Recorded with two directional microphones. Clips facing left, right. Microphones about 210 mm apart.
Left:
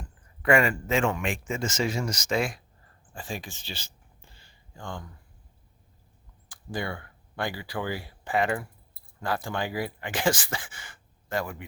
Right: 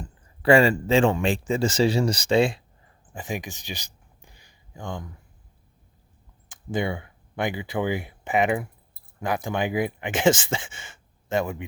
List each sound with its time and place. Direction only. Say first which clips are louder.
0.4 s a man's voice: right 5 dB; 30° right (ahead or behind)
3.1 s a sound: right 5 dB; 20° right (ahead or behind)
6.7 s speech: right 6 dB; 20° right (ahead or behind)